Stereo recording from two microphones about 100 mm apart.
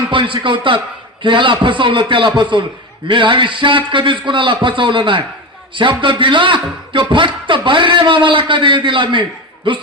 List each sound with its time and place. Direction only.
0.1 s a man's voice: 55° right (ahead or behind)